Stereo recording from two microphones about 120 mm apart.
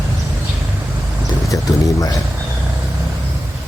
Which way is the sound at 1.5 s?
30° left (ahead or behind).